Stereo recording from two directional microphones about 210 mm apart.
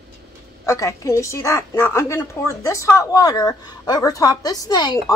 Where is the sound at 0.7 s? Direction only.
15° left (ahead or behind).